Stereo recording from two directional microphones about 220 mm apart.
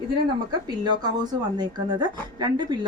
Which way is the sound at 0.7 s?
20° right (ahead or behind).